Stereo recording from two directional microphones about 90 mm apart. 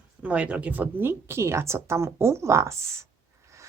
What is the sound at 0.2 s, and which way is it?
A woman's voice, 15° right (ahead or behind).